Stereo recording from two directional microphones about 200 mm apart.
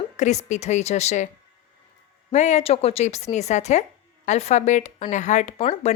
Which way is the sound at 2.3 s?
35° left (ahead or behind).